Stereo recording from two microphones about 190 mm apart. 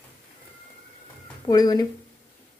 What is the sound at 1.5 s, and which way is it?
Speech, 20° left (ahead or behind).